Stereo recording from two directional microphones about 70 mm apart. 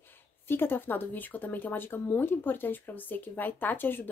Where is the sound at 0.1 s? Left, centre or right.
Left.